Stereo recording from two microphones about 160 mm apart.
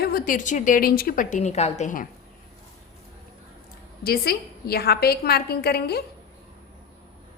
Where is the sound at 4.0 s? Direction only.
75° left (ahead or behind).